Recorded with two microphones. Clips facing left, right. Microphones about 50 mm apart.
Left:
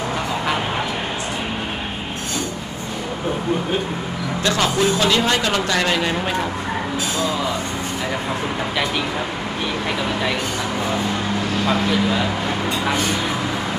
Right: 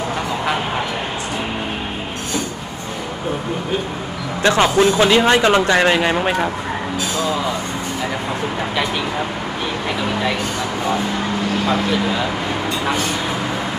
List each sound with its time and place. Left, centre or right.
4.4 s speech: right
11.6 s speech: centre